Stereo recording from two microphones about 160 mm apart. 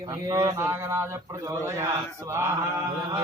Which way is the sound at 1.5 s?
20° right (ahead or behind).